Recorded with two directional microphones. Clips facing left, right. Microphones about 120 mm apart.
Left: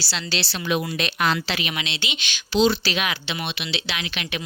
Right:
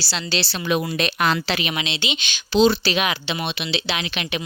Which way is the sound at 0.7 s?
45° right (ahead or behind).